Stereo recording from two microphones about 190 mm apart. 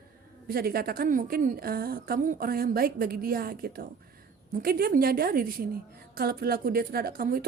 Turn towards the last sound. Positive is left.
turn(degrees=-50)  # may be behind; listen again after turning